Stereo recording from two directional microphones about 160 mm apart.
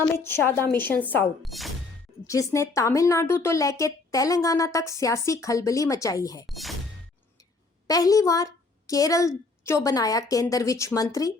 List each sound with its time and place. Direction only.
0.2 s a woman's voice: 15° left (ahead or behind)
1.4 s speech: centre (ahead or behind)
2.2 s a woman's voice: 20° left (ahead or behind)
6.5 s speech: centre (ahead or behind)
7.9 s a woman's voice: 20° left (ahead or behind)